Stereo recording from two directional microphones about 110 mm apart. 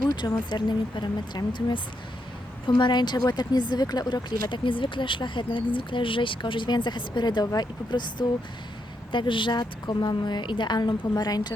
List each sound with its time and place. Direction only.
0.2 s a woman's voice: 40° left (ahead or behind)